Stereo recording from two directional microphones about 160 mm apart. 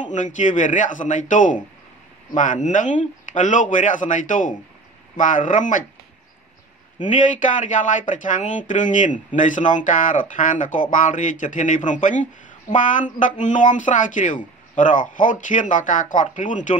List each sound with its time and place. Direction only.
0.0 s speech: 50° left (ahead or behind)
7.0 s speech: 50° left (ahead or behind)